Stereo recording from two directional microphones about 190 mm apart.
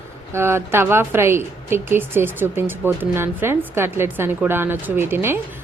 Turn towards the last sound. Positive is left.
turn(degrees=-10)  # may be behind; listen again after turning